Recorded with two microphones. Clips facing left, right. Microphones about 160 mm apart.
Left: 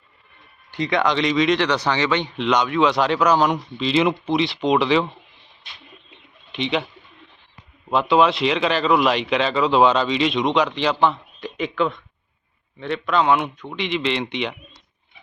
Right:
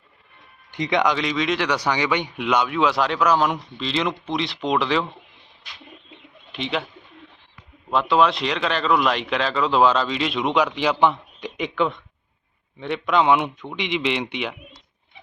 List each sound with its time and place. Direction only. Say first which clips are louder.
0.7 s speech: even; 20° right (ahead or behind)
1.1 s speech: left 4 dB; centre (ahead or behind)
6.5 s speech: left 3 dB; centre (ahead or behind)
7.9 s speech: left 2 dB; centre (ahead or behind); by 11.7 s 15° right (ahead or behind)
11.7 s speech: even; centre (ahead or behind)
12.8 s speech: even; 15° right (ahead or behind)